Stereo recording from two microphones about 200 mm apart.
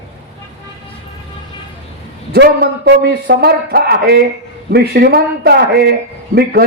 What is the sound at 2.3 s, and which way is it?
A man's voice, 55° right (ahead or behind).